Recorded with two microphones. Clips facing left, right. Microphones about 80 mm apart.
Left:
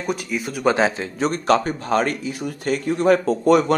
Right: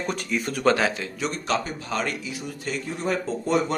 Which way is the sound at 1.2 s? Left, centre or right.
Left.